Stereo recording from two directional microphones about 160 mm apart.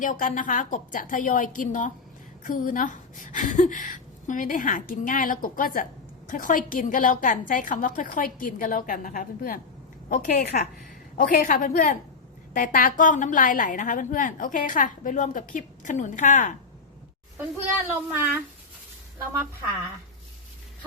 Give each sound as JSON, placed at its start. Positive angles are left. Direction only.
{"t": 0.0, "sound": "a woman's voice", "side_deg": 55}
{"t": 18.1, "sound": "speech", "side_deg": -10}